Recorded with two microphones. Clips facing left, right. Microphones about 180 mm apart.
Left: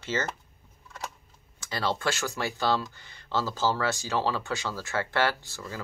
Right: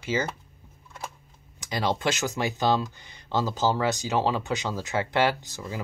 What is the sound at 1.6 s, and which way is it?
Speech, 15° right (ahead or behind).